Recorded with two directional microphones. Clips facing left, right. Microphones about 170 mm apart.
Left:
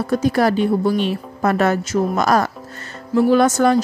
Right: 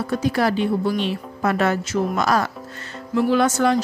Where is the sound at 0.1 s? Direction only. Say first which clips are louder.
Left 4 dB; 45° left (ahead or behind).